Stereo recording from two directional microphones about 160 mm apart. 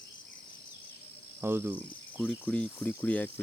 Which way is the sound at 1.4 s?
15° right (ahead or behind).